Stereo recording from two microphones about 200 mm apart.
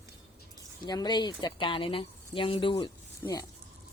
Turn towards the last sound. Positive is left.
turn(degrees=20)  # may be behind; listen again after turning